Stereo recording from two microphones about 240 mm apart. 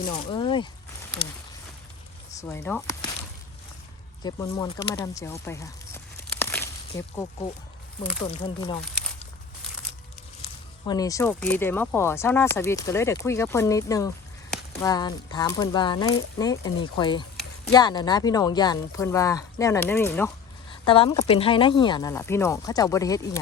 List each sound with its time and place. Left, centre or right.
0.1 s speech: left
2.3 s speech: centre
4.2 s speech: centre
6.4 s a sound: centre
8.2 s speech: centre
10.8 s speech: centre
20.8 s speech: left